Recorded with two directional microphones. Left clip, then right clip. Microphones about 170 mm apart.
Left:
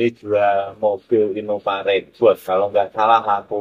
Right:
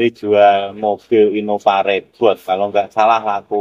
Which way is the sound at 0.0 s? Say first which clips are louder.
Right 6 dB; 70° right (ahead or behind).